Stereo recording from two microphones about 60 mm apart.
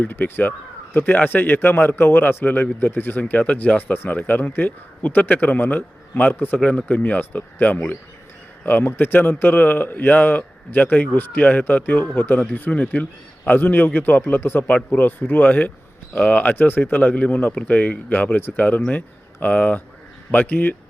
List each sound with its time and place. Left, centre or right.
0.0 s a man's voice: left